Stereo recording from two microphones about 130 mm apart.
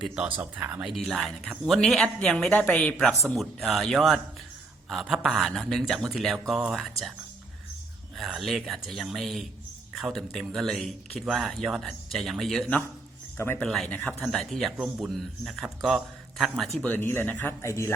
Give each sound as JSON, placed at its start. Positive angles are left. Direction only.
{"t": 0.0, "sound": "speech", "side_deg": -5}
{"t": 0.9, "sound": "speech", "side_deg": 0}
{"t": 8.1, "sound": "speech", "side_deg": 0}
{"t": 13.3, "sound": "speech", "side_deg": 20}
{"t": 13.6, "sound": "speech", "side_deg": 5}